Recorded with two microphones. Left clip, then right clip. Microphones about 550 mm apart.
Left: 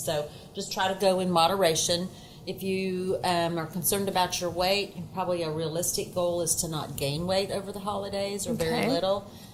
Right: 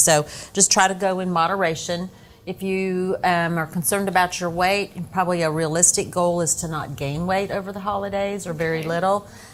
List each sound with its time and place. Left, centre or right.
0.0 s a woman's voice: right
0.9 s a woman's voice: right